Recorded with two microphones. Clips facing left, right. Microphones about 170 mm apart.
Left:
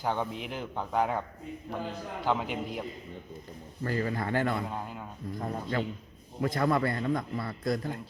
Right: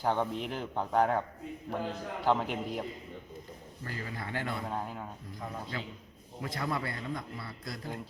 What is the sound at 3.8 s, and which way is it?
Speech, 55° left (ahead or behind).